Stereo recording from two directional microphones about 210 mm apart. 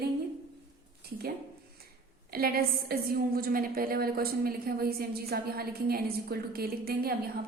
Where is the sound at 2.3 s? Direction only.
45° right (ahead or behind).